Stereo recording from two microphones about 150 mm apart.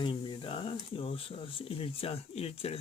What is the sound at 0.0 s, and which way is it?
Speech, 35° left (ahead or behind).